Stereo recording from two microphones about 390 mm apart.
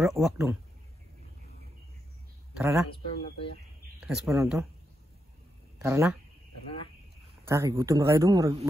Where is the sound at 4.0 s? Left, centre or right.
Centre.